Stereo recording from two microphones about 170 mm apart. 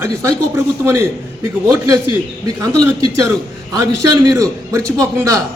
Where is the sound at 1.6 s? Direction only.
20° right (ahead or behind).